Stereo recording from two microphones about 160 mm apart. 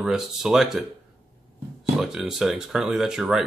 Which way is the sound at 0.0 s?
Centre (ahead or behind).